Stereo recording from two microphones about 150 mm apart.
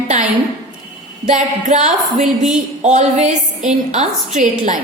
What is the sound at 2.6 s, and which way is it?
Speech, 55° right (ahead or behind).